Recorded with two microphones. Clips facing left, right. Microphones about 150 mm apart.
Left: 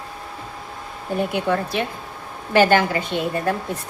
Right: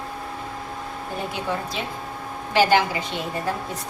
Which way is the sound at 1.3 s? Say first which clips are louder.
Left 5 dB; 60° left (ahead or behind).